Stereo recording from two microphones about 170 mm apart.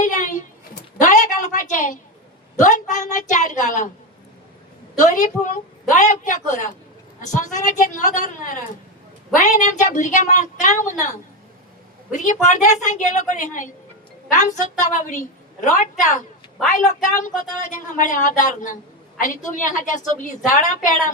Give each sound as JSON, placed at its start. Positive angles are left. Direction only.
{"t": 0.0, "sound": "a sound", "side_deg": 45}
{"t": 2.6, "sound": "speech", "side_deg": 45}
{"t": 5.1, "sound": "speech", "side_deg": 45}
{"t": 9.6, "sound": "speech", "side_deg": 50}
{"t": 12.1, "sound": "speech", "side_deg": 45}